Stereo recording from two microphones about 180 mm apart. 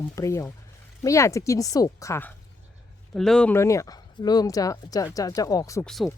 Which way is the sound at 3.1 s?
Centre (ahead or behind).